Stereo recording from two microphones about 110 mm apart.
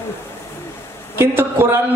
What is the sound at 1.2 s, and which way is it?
Speech, 20° right (ahead or behind).